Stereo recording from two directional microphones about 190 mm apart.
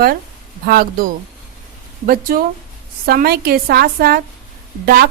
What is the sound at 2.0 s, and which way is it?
Speech, 50° right (ahead or behind).